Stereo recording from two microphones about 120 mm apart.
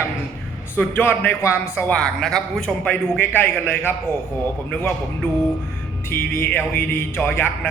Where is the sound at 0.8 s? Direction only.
15° left (ahead or behind).